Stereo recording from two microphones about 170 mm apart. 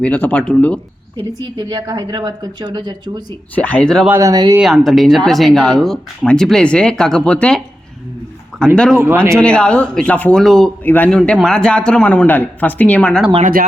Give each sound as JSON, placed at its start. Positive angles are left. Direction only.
{"t": 0.0, "sound": "speech", "side_deg": 10}
{"t": 1.1, "sound": "a woman's voice", "side_deg": -25}
{"t": 3.5, "sound": "speech", "side_deg": 10}
{"t": 4.1, "sound": "a woman's voice", "side_deg": -20}
{"t": 4.5, "sound": "a man's voice", "side_deg": 0}
{"t": 13.4, "sound": "speech", "side_deg": -55}